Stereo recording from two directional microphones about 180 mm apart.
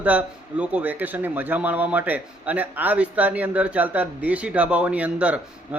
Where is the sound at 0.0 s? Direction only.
10° right (ahead or behind).